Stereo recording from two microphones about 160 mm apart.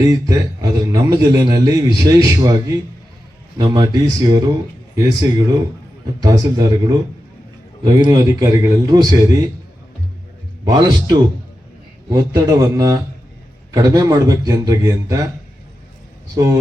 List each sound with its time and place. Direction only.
0.0 s a man's voice: 20° right (ahead or behind)
10.7 s a man's voice: 25° right (ahead or behind)
16.3 s a man's voice: 20° right (ahead or behind)